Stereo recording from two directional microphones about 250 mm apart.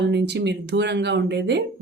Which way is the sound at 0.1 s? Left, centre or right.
Right.